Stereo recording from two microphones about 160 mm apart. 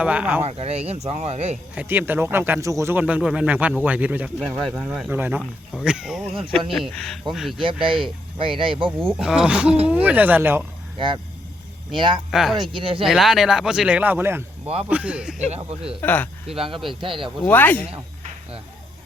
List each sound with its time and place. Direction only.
0.0 s speech: 10° right (ahead or behind)
0.4 s speech: 40° right (ahead or behind)
1.7 s speech: 10° right (ahead or behind)
7.6 s speech: 30° right (ahead or behind)
9.1 s speech: 5° right (ahead or behind)
10.9 s speech: 30° right (ahead or behind)
12.3 s speech: centre (ahead or behind)
12.6 s speech: 30° right (ahead or behind)
13.1 s speech: centre (ahead or behind)
15.4 s speech: 40° right (ahead or behind)
16.0 s speech: 10° left (ahead or behind)
16.6 s speech: 35° right (ahead or behind)
17.4 s speech: 10° left (ahead or behind)
17.8 s insect: 35° right (ahead or behind)